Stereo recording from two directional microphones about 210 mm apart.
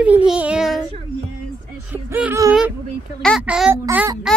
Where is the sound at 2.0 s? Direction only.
10° right (ahead or behind).